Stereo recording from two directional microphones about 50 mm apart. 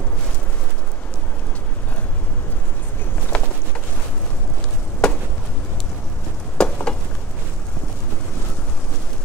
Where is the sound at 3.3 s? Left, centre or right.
Centre.